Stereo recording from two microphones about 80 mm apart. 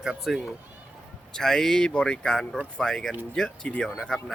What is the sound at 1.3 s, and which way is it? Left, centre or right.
Speech, centre.